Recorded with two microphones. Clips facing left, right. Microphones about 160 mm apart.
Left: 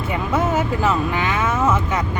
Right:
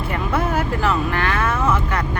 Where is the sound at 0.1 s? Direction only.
20° left (ahead or behind).